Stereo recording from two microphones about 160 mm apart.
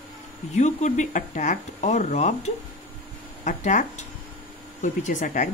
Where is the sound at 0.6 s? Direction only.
45° left (ahead or behind).